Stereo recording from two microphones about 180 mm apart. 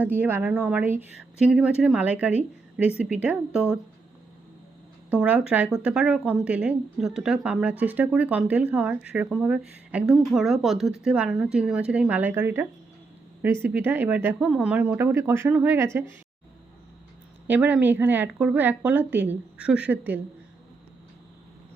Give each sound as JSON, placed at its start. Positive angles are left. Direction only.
{"t": 0.0, "sound": "speech", "side_deg": -10}
{"t": 5.1, "sound": "speech", "side_deg": -5}
{"t": 17.4, "sound": "speech", "side_deg": -10}